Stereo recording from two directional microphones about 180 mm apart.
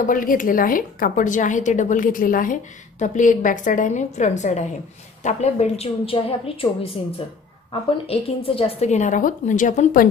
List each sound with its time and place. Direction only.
0.0 s a woman's voice: 50° left (ahead or behind)